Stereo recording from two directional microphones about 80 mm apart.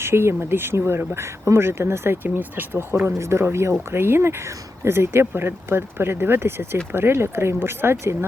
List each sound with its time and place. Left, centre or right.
0.0 s speech: right